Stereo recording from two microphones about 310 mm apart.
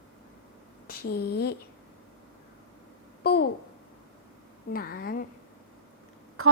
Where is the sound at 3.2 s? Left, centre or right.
Left.